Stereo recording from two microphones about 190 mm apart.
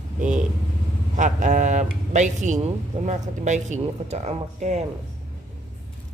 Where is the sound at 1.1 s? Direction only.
40° right (ahead or behind).